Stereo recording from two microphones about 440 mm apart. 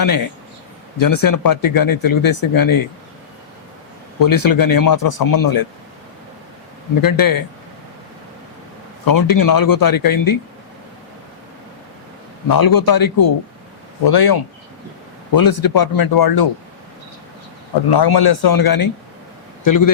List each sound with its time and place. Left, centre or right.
0.9 s speech: left
4.2 s speech: left
7.0 s speech: left
9.0 s speech: left
12.5 s speech: left
17.8 s speech: left